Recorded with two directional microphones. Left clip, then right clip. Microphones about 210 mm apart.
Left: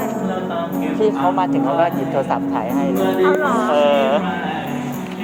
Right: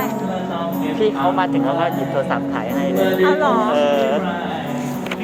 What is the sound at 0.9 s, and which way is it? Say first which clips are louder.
Speech: left 1 dB; 5° left (ahead or behind).